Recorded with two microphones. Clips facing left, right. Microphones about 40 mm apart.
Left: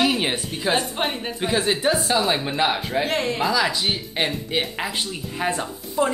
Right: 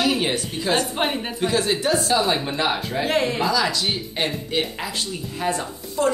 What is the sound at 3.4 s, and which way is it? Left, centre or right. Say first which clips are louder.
Speech: even; centre.